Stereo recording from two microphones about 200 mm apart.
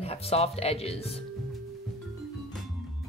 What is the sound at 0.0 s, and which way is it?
A woman's voice, 30° left (ahead or behind).